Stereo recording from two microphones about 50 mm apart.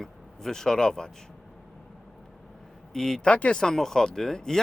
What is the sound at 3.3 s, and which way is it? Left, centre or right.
Speech, left.